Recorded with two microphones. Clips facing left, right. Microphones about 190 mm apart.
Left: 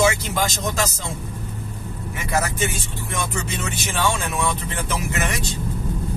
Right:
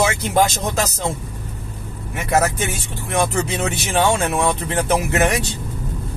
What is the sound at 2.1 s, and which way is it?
Speech, 60° right (ahead or behind).